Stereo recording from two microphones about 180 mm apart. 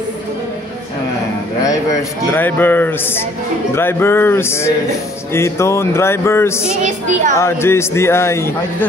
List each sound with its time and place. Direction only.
1.6 s a man's voice: 20° left (ahead or behind)
6.8 s a woman's voice: 45° right (ahead or behind)
7.3 s speech: 15° left (ahead or behind)